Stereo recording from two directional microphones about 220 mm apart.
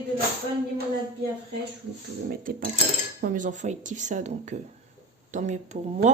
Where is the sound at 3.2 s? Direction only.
40° right (ahead or behind).